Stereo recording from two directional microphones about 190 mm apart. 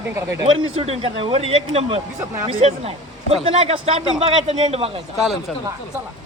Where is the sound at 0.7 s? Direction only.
30° right (ahead or behind).